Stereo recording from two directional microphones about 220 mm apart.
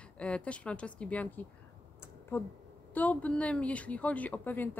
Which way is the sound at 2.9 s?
5° left (ahead or behind).